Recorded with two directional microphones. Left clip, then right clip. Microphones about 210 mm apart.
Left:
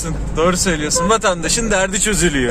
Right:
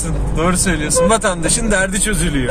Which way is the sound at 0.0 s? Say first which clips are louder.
Left 2 dB; 40° left (ahead or behind).